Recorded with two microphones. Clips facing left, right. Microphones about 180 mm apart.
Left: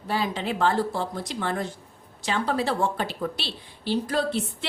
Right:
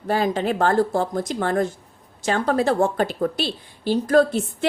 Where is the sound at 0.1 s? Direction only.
50° right (ahead or behind).